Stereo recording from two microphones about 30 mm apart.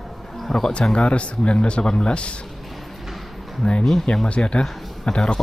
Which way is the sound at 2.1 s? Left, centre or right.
Left.